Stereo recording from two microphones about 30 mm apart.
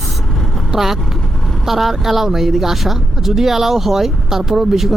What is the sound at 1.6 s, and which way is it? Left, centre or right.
Speech, centre.